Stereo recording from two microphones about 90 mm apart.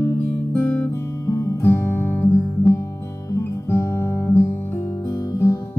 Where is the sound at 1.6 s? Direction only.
25° left (ahead or behind).